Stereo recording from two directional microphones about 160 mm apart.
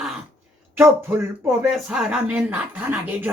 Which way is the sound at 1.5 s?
5° right (ahead or behind).